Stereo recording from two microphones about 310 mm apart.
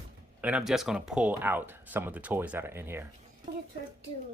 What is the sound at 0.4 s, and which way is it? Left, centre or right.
Speech, centre.